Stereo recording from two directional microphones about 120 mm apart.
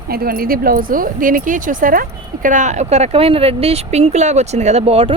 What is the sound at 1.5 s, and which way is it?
Speech, 90° right.